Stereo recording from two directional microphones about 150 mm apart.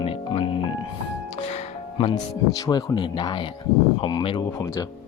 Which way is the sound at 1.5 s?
45° left (ahead or behind).